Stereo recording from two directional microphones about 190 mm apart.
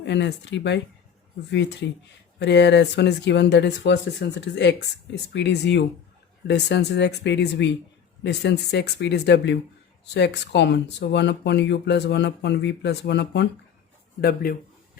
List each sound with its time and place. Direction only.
0.0 s speech: 65° left (ahead or behind)
14.2 s speech: 50° left (ahead or behind)